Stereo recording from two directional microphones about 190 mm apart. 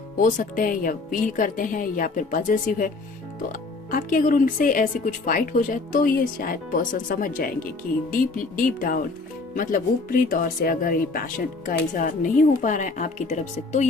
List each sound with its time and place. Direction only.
0.2 s speech: 45° left (ahead or behind)
3.9 s speech: 45° left (ahead or behind)